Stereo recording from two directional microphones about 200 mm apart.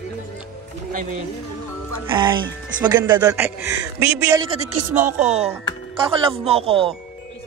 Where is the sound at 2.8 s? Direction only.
20° right (ahead or behind).